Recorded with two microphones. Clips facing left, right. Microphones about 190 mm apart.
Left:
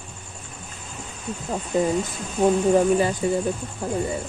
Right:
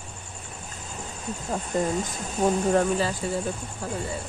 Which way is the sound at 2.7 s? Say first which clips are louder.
Left 4 dB; 15° left (ahead or behind).